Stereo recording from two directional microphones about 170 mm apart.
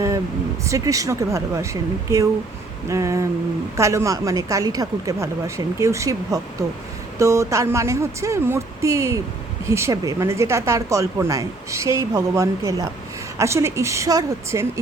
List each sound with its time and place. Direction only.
0.6 s speech: 20° right (ahead or behind)